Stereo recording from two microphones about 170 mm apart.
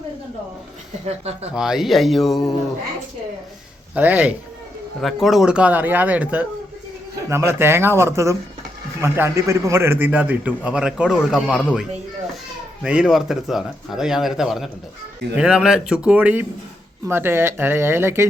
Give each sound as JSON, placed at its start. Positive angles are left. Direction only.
{"t": 1.0, "sound": "speech", "side_deg": -40}
{"t": 1.5, "sound": "speech", "side_deg": -5}
{"t": 3.9, "sound": "a man's voice", "side_deg": -10}